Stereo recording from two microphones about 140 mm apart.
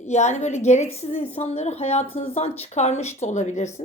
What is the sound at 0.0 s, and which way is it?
A woman's voice, 55° left (ahead or behind).